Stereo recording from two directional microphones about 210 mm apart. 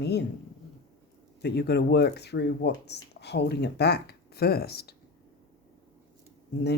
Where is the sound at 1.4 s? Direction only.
50° left (ahead or behind).